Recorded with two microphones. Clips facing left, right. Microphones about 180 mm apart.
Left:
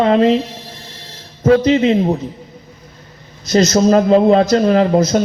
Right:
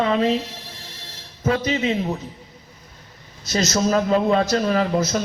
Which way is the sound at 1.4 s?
40° left (ahead or behind).